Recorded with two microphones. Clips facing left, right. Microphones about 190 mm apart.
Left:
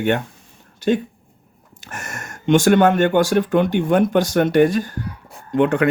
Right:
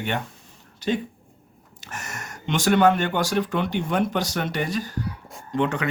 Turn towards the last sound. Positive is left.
turn(degrees=55)  # may be behind; listen again after turning